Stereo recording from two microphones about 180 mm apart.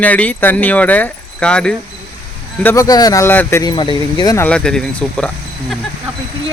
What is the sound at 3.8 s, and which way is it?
Speech, 25° left (ahead or behind).